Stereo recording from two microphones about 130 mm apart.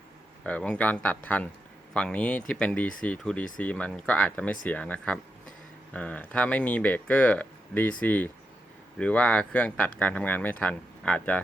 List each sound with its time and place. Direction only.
0.4 s speech: 10° left (ahead or behind)